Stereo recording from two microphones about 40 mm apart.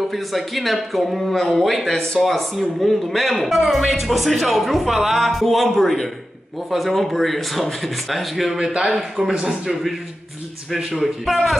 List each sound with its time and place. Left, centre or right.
0.1 s a man's voice: centre
8.5 s speech: centre
10.9 s a man's voice: centre